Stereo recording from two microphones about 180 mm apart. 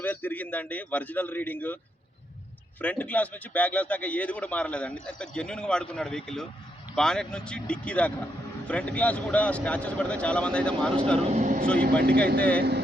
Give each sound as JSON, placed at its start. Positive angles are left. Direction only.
{"t": 0.0, "sound": "a man's voice", "side_deg": 10}
{"t": 2.8, "sound": "a man's voice", "side_deg": 10}
{"t": 11.2, "sound": "speech", "side_deg": -40}
{"t": 12.0, "sound": "speech", "side_deg": -65}
{"t": 12.4, "sound": "a man's voice", "side_deg": 5}